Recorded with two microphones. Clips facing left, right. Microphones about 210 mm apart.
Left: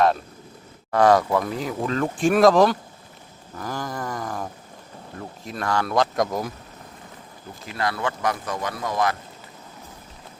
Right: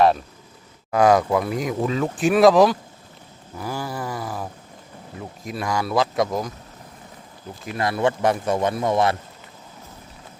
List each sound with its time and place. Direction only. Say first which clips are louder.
0.9 s speech: right 1 dB; 10° right (ahead or behind)
7.8 s a man's voice: right 5 dB; 25° right (ahead or behind)